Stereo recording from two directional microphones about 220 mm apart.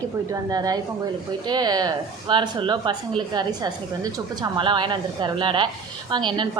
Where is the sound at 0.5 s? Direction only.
15° right (ahead or behind).